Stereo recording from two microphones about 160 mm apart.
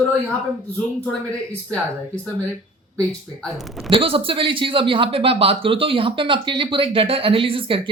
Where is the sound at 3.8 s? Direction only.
35° right (ahead or behind).